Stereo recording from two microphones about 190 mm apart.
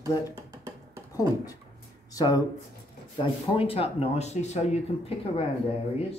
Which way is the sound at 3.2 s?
30° left (ahead or behind).